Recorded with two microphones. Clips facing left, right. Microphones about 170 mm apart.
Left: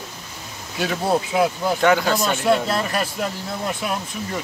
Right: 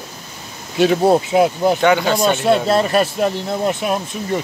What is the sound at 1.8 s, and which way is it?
Speech, centre (ahead or behind).